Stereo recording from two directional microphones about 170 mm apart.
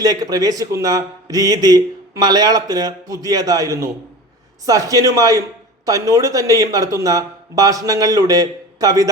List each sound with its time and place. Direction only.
0.0 s a man's voice: 20° right (ahead or behind)